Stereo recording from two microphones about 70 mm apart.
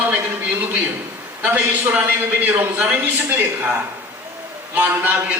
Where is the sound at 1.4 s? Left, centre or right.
Right.